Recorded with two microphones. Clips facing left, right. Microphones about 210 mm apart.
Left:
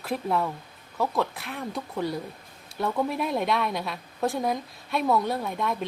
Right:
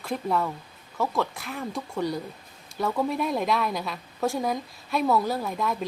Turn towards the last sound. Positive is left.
turn(degrees=0)  # may be behind; listen again after turning